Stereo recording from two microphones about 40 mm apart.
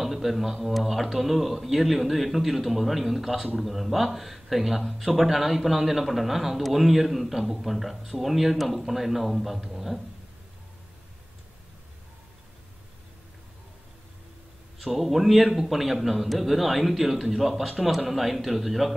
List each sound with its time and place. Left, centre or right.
0.0 s speech: centre
14.9 s speech: centre